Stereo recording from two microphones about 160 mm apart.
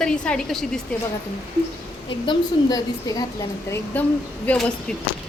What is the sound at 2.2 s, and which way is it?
A woman's voice, 25° left (ahead or behind).